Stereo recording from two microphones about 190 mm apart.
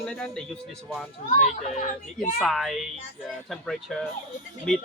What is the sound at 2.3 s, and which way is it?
Speech, centre (ahead or behind).